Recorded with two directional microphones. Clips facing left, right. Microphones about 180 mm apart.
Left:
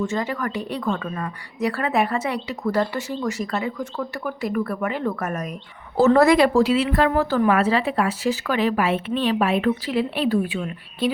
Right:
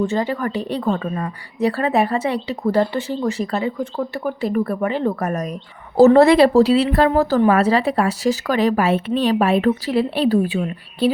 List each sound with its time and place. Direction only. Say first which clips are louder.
0.0 s a woman's voice: right 4 dB; 30° right (ahead or behind)